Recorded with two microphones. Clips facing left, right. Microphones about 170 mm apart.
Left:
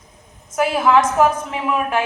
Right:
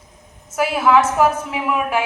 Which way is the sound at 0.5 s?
5° right (ahead or behind).